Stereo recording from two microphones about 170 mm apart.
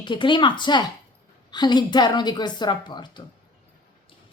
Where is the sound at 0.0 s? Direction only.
25° left (ahead or behind).